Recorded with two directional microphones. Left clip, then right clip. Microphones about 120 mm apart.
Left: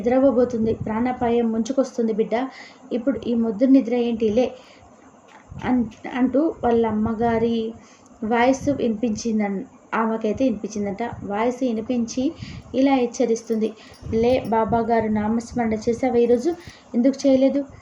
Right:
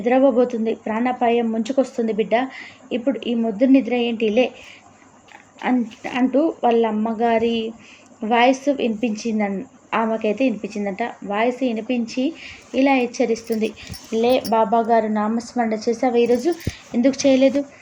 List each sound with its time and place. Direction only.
0.3 s a woman's voice: 15° right (ahead or behind)
5.6 s a woman's voice: 20° right (ahead or behind)